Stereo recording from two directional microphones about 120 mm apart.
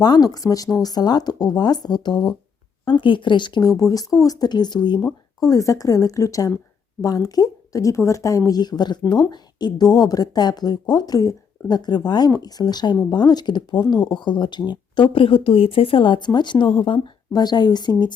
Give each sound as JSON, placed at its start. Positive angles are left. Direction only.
{"t": 0.0, "sound": "a woman's voice", "side_deg": 35}